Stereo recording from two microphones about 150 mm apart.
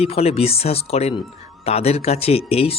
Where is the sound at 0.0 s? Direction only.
40° left (ahead or behind).